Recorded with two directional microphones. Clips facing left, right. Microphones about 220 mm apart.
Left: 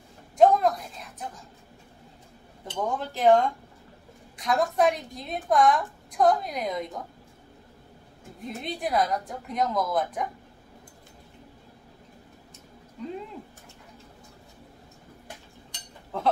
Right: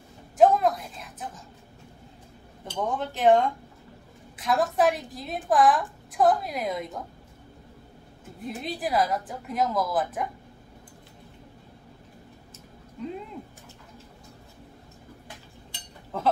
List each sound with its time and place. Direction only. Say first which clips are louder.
0.4 s a sound: even; 5° right (ahead or behind)
2.6 s a woman's voice: right 1 dB; centre (ahead or behind)
8.4 s a woman's voice: right 1 dB; centre (ahead or behind)
15.7 s chink: even; centre (ahead or behind)